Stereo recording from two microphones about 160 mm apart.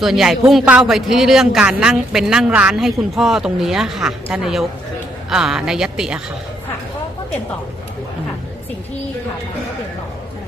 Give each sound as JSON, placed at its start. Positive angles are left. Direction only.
{"t": 0.0, "sound": "speech", "side_deg": -5}